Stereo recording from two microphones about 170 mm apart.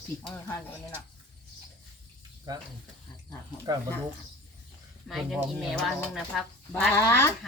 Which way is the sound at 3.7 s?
25° right (ahead or behind).